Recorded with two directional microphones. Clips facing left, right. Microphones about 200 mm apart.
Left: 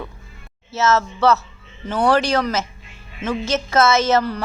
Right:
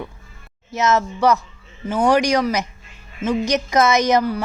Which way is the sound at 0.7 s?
15° right (ahead or behind).